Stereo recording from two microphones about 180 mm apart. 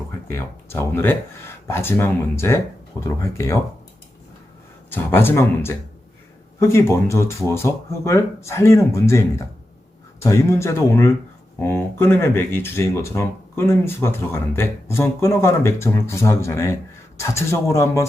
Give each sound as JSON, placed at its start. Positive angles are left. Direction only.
{"t": 0.3, "sound": "speech", "side_deg": 15}
{"t": 4.9, "sound": "speech", "side_deg": 10}